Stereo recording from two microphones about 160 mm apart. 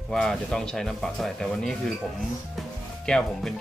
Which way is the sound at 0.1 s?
5° left (ahead or behind).